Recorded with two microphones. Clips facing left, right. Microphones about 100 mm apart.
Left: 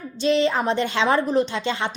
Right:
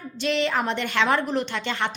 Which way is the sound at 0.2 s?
20° left (ahead or behind).